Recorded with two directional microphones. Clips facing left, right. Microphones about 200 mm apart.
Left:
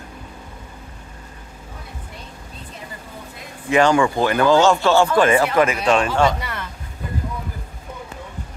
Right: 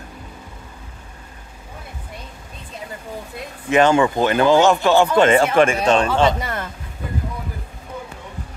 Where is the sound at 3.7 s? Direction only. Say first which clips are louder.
Right 1 dB; 20° right (ahead or behind).